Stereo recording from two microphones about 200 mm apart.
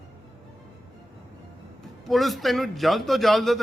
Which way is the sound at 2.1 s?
Centre (ahead or behind).